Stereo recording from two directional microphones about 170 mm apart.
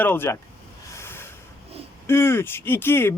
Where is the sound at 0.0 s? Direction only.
15° left (ahead or behind).